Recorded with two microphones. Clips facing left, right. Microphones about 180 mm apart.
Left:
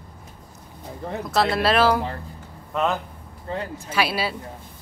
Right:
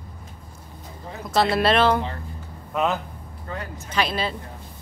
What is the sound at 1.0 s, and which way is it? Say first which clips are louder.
Speech: left 8 dB; 60° left (ahead or behind).